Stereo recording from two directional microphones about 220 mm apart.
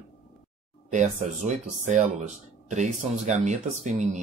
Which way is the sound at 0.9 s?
35° right (ahead or behind).